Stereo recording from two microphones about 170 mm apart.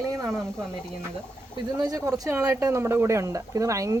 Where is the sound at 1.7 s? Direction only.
20° right (ahead or behind).